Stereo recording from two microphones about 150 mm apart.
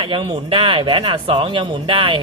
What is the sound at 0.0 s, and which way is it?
Speech, 35° right (ahead or behind).